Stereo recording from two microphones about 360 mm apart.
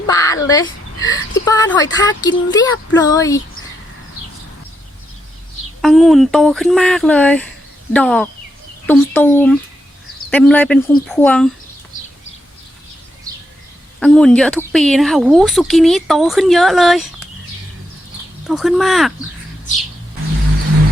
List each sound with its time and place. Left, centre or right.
0.1 s a sound: centre
0.9 s whimper: left
1.5 s speech: centre
5.8 s speech: centre
14.0 s speech: centre
18.4 s speech: centre